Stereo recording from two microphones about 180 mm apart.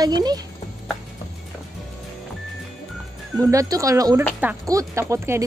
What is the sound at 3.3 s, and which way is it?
Speech, 20° right (ahead or behind).